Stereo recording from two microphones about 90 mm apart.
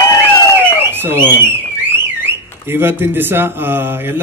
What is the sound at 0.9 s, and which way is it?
Speech, 25° right (ahead or behind).